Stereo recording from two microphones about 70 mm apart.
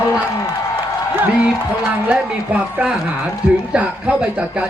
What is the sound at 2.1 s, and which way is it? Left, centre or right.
Speech, centre.